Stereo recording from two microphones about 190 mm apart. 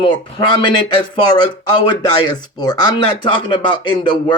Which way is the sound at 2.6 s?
20° left (ahead or behind).